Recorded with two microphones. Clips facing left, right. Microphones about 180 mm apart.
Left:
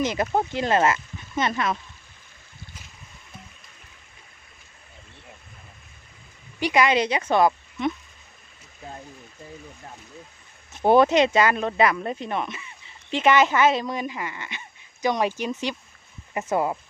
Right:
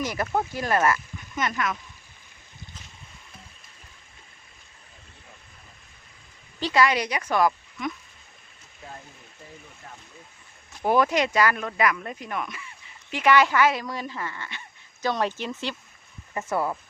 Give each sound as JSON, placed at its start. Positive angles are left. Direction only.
{"t": 0.0, "sound": "speech", "side_deg": 20}
{"t": 6.6, "sound": "speech", "side_deg": 15}
{"t": 10.7, "sound": "speech", "side_deg": 25}